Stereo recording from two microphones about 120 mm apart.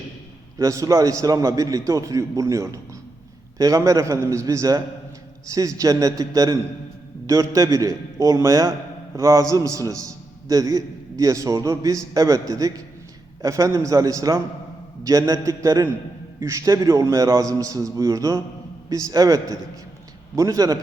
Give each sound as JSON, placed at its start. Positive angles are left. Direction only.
{"t": 0.6, "sound": "a man's voice", "side_deg": -25}